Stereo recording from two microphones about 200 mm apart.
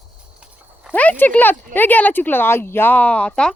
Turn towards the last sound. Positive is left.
turn(degrees=5)  # may be behind; listen again after turning